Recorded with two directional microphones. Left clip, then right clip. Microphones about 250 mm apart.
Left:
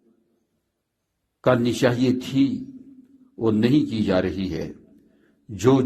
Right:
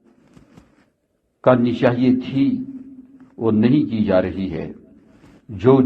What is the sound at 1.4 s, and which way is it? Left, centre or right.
A man's voice, left.